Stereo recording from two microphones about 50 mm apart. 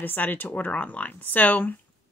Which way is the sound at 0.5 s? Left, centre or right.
Left.